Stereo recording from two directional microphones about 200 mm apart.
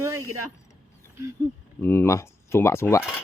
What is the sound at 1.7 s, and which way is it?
Speech, 10° left (ahead or behind).